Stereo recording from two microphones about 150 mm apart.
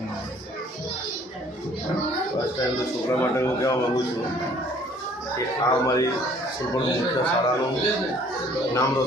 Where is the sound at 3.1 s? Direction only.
20° left (ahead or behind).